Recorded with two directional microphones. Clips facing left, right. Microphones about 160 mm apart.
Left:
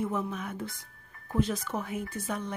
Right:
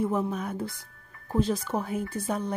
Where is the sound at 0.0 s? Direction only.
35° right (ahead or behind).